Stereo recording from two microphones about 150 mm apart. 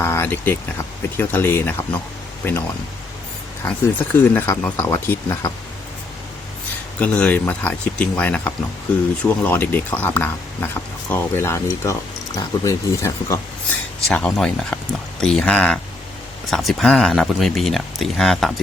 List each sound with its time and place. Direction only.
0.0 s a sound: 15° left (ahead or behind)
1.1 s speech: 15° left (ahead or behind)
3.6 s speech: 15° left (ahead or behind)
7.0 s speech: 10° left (ahead or behind)
14.1 s speech: 5° left (ahead or behind)